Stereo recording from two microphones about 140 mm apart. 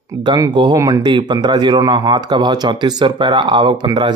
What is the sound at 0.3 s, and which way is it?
A man's voice, 30° right (ahead or behind).